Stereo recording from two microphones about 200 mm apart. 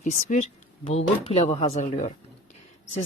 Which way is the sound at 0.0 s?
40° left (ahead or behind).